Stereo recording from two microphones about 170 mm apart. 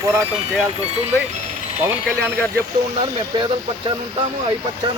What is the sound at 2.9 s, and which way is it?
Speech, 30° right (ahead or behind).